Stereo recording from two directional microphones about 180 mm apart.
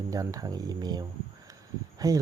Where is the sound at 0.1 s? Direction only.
20° right (ahead or behind).